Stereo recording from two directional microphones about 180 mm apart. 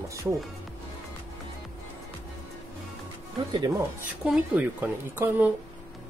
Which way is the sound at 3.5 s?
20° right (ahead or behind).